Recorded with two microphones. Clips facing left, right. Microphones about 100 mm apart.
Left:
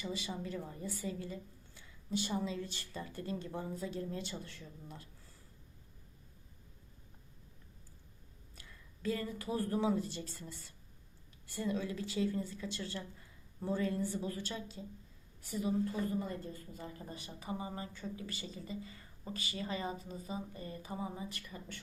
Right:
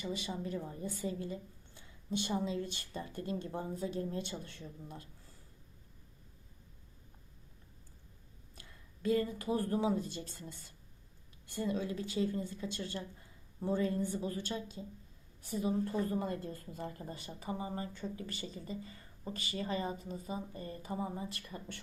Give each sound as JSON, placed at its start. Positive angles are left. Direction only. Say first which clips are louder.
{"t": 0.0, "sound": "a woman's voice", "louder": "right 2 dB", "side_deg": -40}
{"t": 8.5, "sound": "a woman's voice", "louder": "even", "side_deg": -30}
{"t": 11.8, "sound": "a woman's voice", "louder": "right 1 dB", "side_deg": -30}
{"t": 16.0, "sound": "a woman's voice", "louder": "right 2 dB", "side_deg": -65}
{"t": 16.7, "sound": "speech", "louder": "right 3 dB", "side_deg": -45}